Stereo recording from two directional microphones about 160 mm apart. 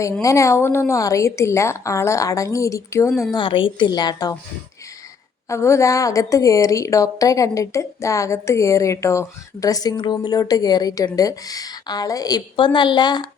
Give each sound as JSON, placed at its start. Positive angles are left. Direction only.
{"t": 0.0, "sound": "a woman's voice", "side_deg": 20}
{"t": 3.3, "sound": "a woman's voice", "side_deg": 30}
{"t": 5.5, "sound": "a woman's voice", "side_deg": 15}